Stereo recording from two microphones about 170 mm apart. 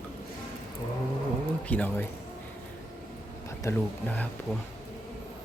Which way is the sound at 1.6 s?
10° left (ahead or behind).